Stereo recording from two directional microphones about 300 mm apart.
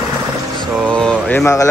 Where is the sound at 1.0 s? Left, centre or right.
Centre.